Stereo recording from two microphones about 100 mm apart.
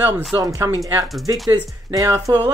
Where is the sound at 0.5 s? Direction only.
35° right (ahead or behind).